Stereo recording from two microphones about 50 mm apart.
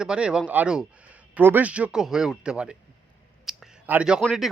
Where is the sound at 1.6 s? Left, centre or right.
Right.